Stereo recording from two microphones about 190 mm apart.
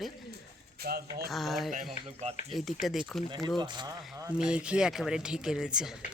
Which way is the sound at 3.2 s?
20° right (ahead or behind).